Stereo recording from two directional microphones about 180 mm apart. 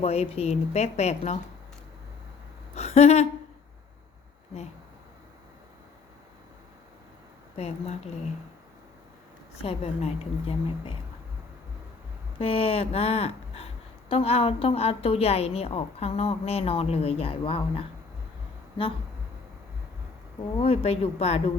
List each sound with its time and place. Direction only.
0.0 s a woman's voice: 35° left (ahead or behind)
2.7 s a sound: 35° left (ahead or behind)
7.5 s a woman's voice: 35° left (ahead or behind)
9.6 s a woman's voice: 35° left (ahead or behind)
12.4 s a woman's voice: 30° left (ahead or behind)
20.6 s a woman's voice: 30° left (ahead or behind)